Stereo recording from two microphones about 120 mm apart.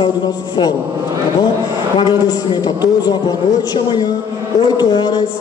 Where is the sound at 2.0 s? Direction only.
35° left (ahead or behind).